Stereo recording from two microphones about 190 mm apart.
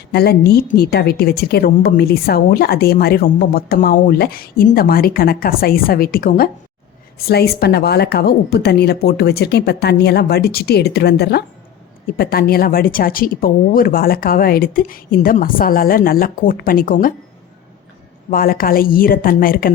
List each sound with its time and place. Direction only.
0.1 s a woman's voice: 55° left (ahead or behind)
18.3 s a woman's voice: 50° left (ahead or behind)